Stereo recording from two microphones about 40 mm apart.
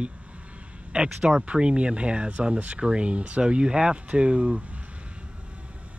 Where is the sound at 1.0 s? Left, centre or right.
Centre.